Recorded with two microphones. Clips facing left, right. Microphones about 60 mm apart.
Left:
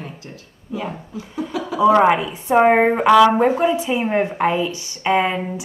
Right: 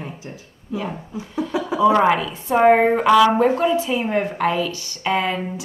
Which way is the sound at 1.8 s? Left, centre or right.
Centre.